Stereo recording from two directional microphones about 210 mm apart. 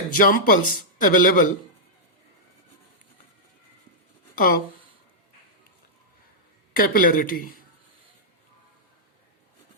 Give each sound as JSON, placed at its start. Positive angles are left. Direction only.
{"t": 0.2, "sound": "speech", "side_deg": 40}
{"t": 4.4, "sound": "speech", "side_deg": 40}
{"t": 6.7, "sound": "speech", "side_deg": 45}